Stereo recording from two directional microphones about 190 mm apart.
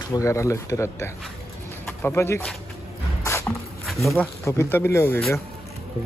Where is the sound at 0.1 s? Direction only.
15° left (ahead or behind).